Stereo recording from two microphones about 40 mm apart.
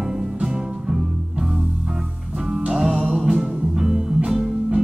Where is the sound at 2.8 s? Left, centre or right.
Centre.